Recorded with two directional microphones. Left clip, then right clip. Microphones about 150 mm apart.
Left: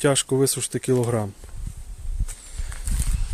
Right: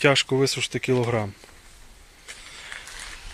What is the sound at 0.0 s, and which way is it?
Speech, 40° left (ahead or behind).